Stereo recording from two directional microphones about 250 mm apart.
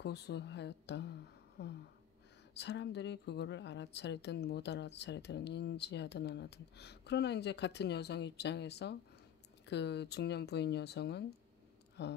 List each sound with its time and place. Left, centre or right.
0.0 s speech: left